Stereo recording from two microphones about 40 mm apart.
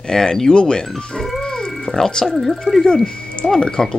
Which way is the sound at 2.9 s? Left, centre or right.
Left.